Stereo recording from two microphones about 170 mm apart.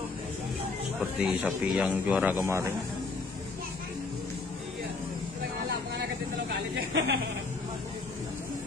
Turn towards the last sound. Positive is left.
turn(degrees=-85)